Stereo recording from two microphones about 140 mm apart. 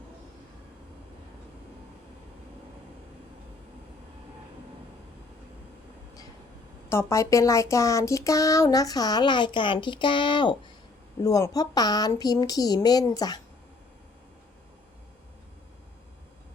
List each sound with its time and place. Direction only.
6.9 s speech: 20° left (ahead or behind)